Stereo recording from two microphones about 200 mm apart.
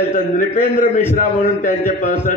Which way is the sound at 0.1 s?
40° left (ahead or behind).